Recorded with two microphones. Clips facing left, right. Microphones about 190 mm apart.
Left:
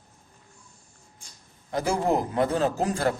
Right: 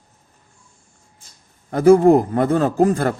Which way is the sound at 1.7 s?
55° right (ahead or behind).